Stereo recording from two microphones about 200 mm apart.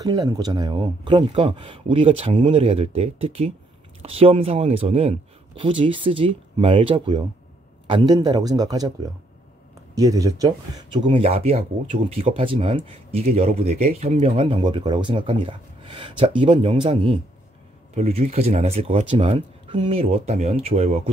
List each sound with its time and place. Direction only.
0.0 s speech: 20° right (ahead or behind)